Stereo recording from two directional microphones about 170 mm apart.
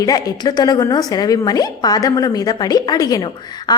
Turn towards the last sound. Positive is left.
turn(degrees=20)  # may be behind; listen again after turning